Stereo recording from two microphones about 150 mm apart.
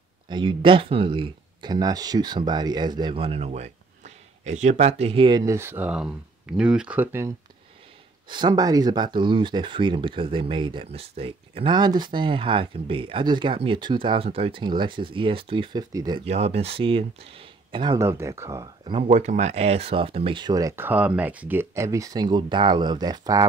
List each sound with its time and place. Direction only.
0.3 s speech: 35° right (ahead or behind)
5.4 s speech: 20° right (ahead or behind)
8.3 s speech: 30° right (ahead or behind)
15.9 s speech: 25° right (ahead or behind)
16.3 s speech: 45° right (ahead or behind)
17.9 s speech: 20° right (ahead or behind)
19.0 s speech: 50° right (ahead or behind); by 23.4 s 25° right (ahead or behind)